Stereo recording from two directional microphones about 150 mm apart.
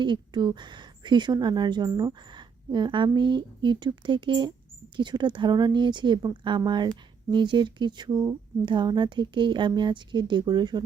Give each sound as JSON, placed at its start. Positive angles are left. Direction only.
{"t": 0.0, "sound": "speech", "side_deg": -30}